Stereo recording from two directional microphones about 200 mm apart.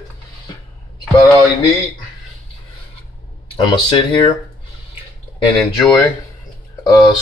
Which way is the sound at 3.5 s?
25° left (ahead or behind).